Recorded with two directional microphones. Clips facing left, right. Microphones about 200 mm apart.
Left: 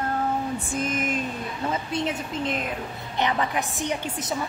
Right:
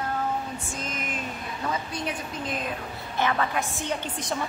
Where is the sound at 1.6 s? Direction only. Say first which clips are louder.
Left 3 dB; 25° left (ahead or behind); by 4.3 s 10° left (ahead or behind).